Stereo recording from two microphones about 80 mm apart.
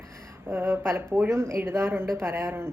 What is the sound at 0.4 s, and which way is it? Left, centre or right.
A woman's voice, right.